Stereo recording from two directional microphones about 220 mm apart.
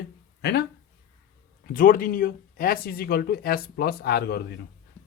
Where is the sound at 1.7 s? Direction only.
40° left (ahead or behind).